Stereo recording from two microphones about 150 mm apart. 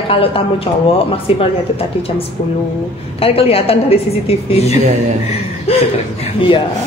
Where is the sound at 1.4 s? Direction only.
40° left (ahead or behind).